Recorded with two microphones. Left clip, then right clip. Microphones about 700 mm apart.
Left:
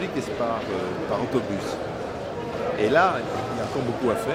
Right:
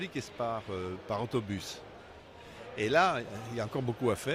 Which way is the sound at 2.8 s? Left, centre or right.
Right.